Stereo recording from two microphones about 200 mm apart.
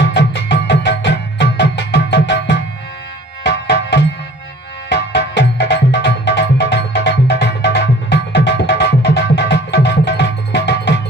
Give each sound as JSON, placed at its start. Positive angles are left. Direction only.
{"t": 0.0, "sound": "music", "side_deg": 60}
{"t": 4.9, "sound": "music", "side_deg": 60}